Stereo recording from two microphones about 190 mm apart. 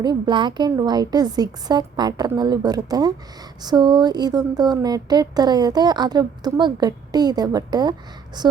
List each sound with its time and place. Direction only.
0.0 s speech: 25° right (ahead or behind)